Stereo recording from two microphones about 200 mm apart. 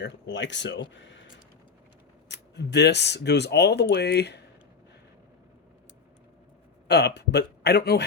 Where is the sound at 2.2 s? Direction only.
60° left (ahead or behind).